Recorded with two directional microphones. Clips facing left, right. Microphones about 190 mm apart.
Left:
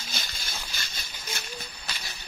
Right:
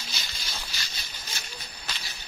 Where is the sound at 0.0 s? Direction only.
50° left (ahead or behind).